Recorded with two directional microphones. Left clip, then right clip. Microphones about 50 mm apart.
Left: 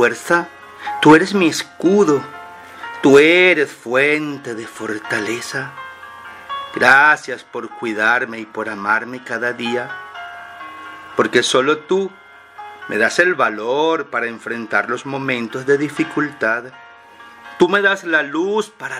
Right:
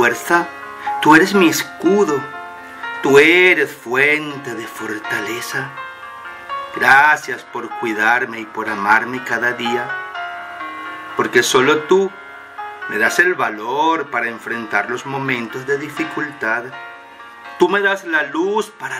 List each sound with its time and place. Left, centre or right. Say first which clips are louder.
0.0 s music: right 1 dB; left
1.1 s speech: right 2 dB; left
6.8 s speech: even; left
9.8 s music: right 5 dB; right
11.1 s speech: right 1 dB; left